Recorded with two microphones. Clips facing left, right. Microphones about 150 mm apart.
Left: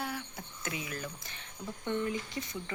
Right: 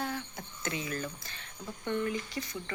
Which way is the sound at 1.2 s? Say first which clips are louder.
Left 1 dB; 20° left (ahead or behind).